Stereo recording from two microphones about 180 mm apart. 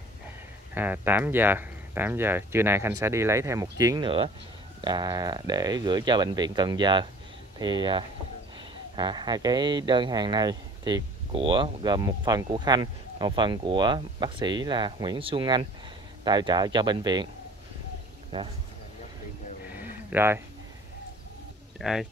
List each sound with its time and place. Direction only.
0.7 s speech: 10° right (ahead or behind)
18.3 s speech: 25° right (ahead or behind)
19.7 s a sound: 10° right (ahead or behind)
21.7 s speech: centre (ahead or behind)